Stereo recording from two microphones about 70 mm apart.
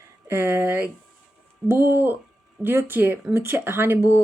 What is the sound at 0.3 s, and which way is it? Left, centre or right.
Speech, right.